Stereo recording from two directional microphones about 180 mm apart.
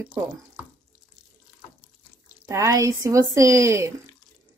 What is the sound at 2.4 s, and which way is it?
A woman's voice, 15° right (ahead or behind).